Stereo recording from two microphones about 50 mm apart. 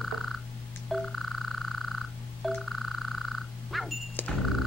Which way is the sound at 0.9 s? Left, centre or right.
Centre.